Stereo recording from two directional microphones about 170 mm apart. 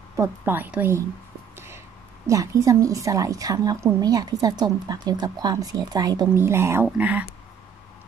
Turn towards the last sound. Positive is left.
turn(degrees=-10)  # may be behind; listen again after turning